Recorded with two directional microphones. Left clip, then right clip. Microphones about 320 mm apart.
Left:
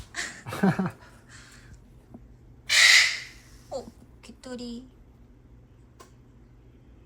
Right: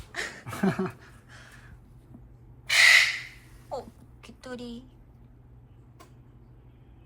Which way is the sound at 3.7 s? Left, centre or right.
Centre.